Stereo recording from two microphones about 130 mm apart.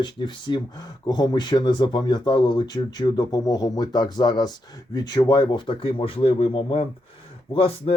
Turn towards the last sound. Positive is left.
turn(degrees=45)  # may be behind; listen again after turning